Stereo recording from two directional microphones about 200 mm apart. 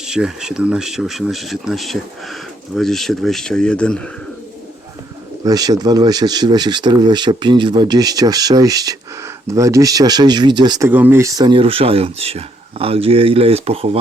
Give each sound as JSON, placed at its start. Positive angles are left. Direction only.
{"t": 0.0, "sound": "speech", "side_deg": -5}
{"t": 5.5, "sound": "speech", "side_deg": -20}